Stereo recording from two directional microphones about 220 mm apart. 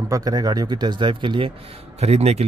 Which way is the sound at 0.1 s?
15° right (ahead or behind).